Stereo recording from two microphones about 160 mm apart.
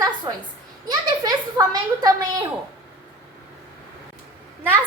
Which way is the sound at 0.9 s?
25° right (ahead or behind).